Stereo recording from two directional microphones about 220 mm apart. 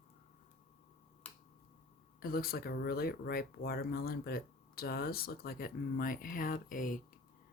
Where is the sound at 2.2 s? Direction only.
40° left (ahead or behind).